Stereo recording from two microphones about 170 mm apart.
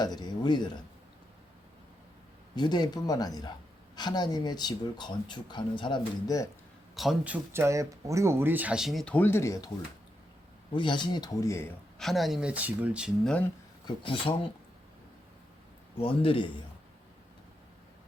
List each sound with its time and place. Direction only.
0.0 s speech: 25° left (ahead or behind)
2.6 s speech: 25° left (ahead or behind)
6.9 s speech: centre (ahead or behind); by 9.6 s 15° left (ahead or behind)
10.7 s speech: 25° left (ahead or behind)
11.9 s speech: centre (ahead or behind)
13.8 s speech: 30° left (ahead or behind)
16.0 s speech: 35° left (ahead or behind)